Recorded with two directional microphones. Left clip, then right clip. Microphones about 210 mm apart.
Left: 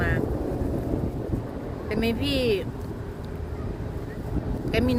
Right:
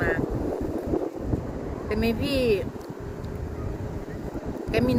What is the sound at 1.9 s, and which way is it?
Speech, centre (ahead or behind).